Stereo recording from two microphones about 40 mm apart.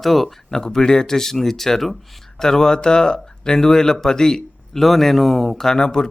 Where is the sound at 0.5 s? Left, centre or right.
Centre.